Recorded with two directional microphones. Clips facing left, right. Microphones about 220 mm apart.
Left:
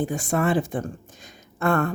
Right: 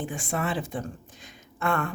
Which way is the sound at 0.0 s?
40° left (ahead or behind).